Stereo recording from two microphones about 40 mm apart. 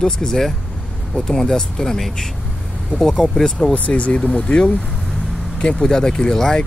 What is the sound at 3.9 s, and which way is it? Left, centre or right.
Speech, left.